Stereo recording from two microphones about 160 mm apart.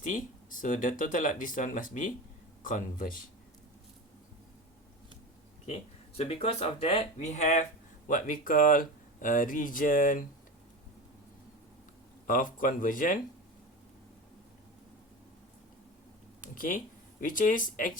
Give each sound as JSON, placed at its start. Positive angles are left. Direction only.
{"t": 0.0, "sound": "speech", "side_deg": 55}
{"t": 5.6, "sound": "speech", "side_deg": 40}
{"t": 12.3, "sound": "speech", "side_deg": 60}
{"t": 16.6, "sound": "speech", "side_deg": 60}